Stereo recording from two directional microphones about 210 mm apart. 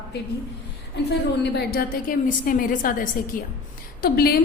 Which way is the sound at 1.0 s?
55° left (ahead or behind).